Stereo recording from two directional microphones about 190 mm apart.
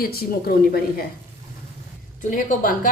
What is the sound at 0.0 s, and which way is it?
A woman's voice, 50° left (ahead or behind).